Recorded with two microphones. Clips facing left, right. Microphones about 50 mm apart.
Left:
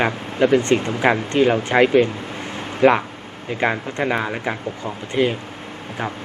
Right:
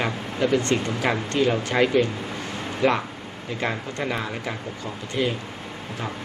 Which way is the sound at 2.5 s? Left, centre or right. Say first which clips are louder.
Left 7 dB; left.